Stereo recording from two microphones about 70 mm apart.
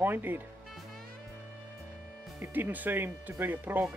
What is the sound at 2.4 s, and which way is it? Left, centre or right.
Speech, right.